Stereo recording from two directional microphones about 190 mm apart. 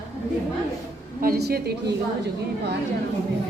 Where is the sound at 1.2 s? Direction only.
50° right (ahead or behind).